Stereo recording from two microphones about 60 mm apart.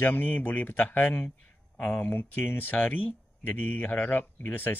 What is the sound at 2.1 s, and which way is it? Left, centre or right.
Speech, left.